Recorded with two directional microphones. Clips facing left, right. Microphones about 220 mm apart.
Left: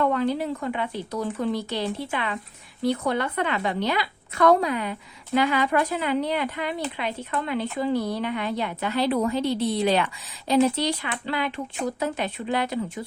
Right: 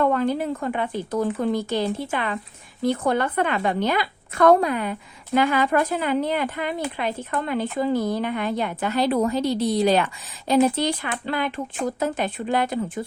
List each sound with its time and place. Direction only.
0.0 s a woman's voice: 45° right (ahead or behind)